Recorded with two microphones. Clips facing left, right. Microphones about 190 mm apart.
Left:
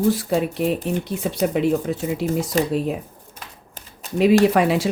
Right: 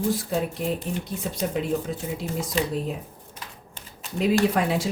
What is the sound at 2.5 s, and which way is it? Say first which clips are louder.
Speech: left 4 dB; 45° left (ahead or behind).